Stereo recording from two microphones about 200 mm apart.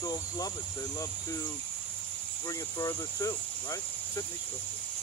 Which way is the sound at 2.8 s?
15° left (ahead or behind).